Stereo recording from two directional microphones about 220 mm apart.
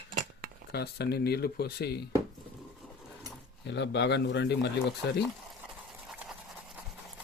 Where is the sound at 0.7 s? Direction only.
45° left (ahead or behind).